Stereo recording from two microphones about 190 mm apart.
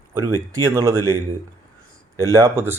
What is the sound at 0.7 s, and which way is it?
Speech, 15° right (ahead or behind).